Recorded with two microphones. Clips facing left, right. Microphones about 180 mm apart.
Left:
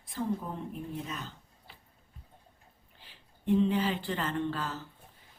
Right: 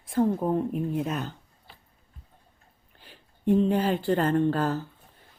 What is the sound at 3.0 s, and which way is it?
Speech, 45° right (ahead or behind).